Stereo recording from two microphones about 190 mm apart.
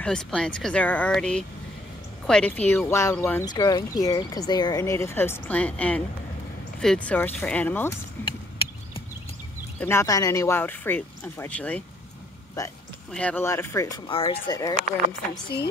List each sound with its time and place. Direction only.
0.0 s speech: 5° left (ahead or behind)
8.2 s a sound: 10° left (ahead or behind)
9.8 s speech: 15° left (ahead or behind)
12.6 s speech: 20° left (ahead or behind)
13.1 s speech: 5° left (ahead or behind); by 14.4 s 30° left (ahead or behind)
14.5 s speech: 20° left (ahead or behind)